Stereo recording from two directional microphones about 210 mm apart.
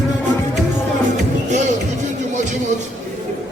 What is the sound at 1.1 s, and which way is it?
Music, 35° right (ahead or behind).